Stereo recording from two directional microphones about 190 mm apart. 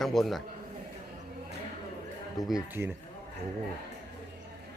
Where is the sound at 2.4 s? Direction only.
20° left (ahead or behind).